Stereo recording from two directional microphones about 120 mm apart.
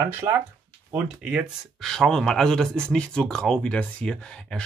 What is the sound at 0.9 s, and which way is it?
Speech, 10° right (ahead or behind).